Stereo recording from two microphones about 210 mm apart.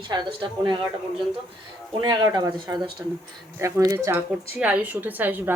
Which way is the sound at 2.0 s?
20° right (ahead or behind).